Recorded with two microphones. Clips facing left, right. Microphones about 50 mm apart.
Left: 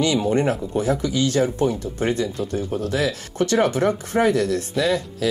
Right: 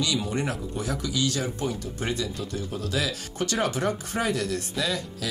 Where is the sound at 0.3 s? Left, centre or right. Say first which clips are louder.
Left 9 dB; left.